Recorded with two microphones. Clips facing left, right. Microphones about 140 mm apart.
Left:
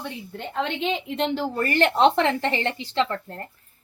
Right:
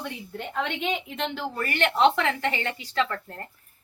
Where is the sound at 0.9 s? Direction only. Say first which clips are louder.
Left 5 dB; 35° left (ahead or behind).